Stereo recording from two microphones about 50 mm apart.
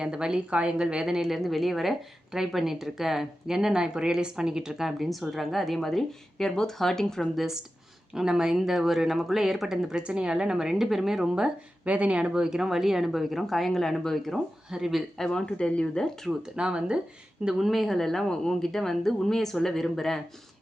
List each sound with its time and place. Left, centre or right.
0.0 s a woman's voice: centre
7.3 s a woman's voice: centre
11.9 s speech: right; by 14.3 s centre
14.7 s a woman's voice: centre
15.2 s speech: centre
16.6 s speech: centre
17.6 s speech: centre